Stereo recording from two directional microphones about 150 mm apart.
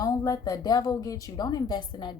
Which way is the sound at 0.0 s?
25° left (ahead or behind).